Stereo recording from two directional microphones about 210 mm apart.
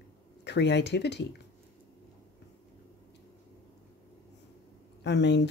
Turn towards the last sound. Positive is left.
turn(degrees=55)  # may be behind; listen again after turning